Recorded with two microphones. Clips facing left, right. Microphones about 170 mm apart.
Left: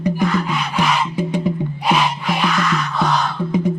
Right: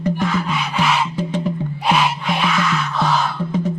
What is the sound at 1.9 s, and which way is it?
Music, centre (ahead or behind).